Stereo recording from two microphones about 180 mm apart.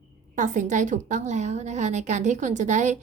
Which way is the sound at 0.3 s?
45° right (ahead or behind).